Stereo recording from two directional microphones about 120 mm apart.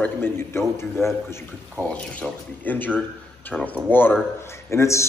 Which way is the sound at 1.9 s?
10° left (ahead or behind).